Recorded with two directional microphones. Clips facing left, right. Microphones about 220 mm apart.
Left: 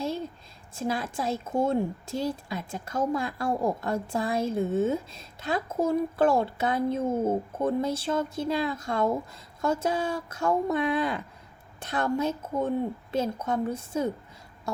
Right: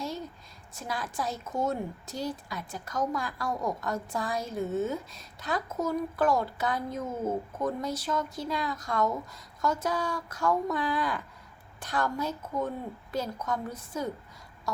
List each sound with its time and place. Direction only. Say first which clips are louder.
0.7 s a woman's voice: left 6 dB; 25° left (ahead or behind)